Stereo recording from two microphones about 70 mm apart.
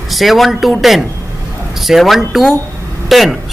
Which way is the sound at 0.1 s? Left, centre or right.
Centre.